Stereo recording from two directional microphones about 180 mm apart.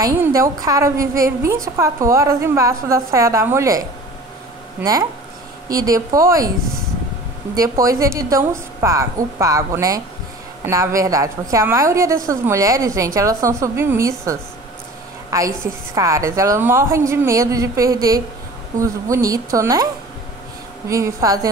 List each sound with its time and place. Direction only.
0.0 s a woman's voice: 15° right (ahead or behind)
7.5 s a woman's voice: 20° right (ahead or behind)
20.9 s speech: 20° right (ahead or behind)